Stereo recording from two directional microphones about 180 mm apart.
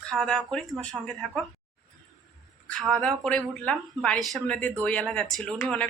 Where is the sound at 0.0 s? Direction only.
5° left (ahead or behind).